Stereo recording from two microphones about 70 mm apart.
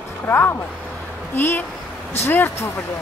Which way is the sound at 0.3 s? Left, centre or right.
Left.